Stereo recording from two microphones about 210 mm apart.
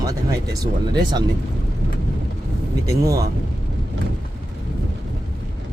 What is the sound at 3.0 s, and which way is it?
Speech, 15° right (ahead or behind).